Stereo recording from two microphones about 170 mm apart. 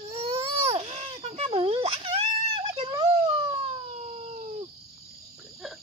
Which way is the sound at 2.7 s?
30° right (ahead or behind).